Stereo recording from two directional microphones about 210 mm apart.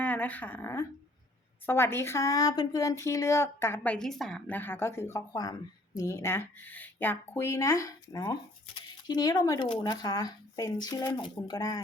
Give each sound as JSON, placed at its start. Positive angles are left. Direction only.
{"t": 0.0, "sound": "a woman's voice", "side_deg": 5}